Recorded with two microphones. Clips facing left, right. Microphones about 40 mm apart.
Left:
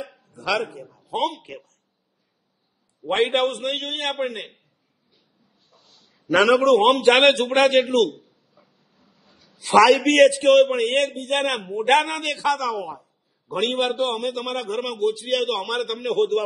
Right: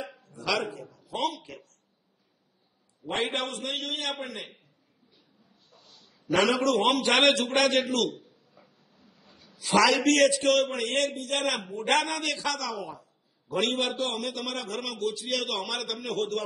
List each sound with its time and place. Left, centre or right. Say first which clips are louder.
0.8 s a man's voice: left 6 dB; left
3.1 s a man's voice: left 9 dB; left
6.2 s a man's voice: left 7 dB; left
8.9 s a sound: even; left
9.2 s a sound: even; right
9.7 s a man's voice: left 7 dB; left
16.0 s a man's voice: left 10 dB; left